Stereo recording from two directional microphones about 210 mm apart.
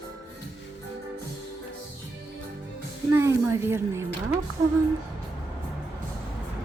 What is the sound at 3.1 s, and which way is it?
Speech, 15° right (ahead or behind).